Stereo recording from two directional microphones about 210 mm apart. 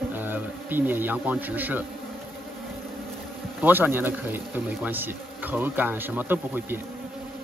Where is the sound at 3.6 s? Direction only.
10° right (ahead or behind).